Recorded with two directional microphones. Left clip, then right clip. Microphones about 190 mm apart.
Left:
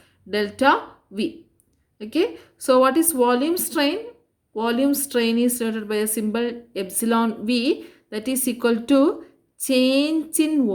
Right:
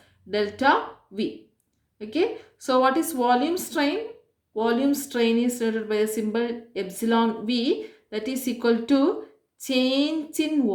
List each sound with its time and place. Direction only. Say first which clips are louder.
0.3 s a woman's voice: left 3 dB; 45° left (ahead or behind)